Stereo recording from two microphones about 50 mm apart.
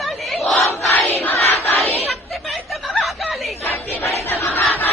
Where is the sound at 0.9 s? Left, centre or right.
Left.